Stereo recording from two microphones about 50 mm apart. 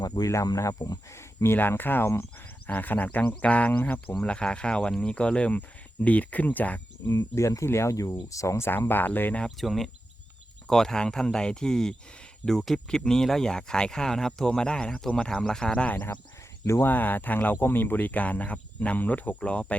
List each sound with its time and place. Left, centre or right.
0.3 s speech: left
1.1 s speech: left
1.7 s speech: left
4.3 s speech: left
7.1 s speech: left
8.6 s speech: left
9.6 s speech: centre
16.8 s speech: left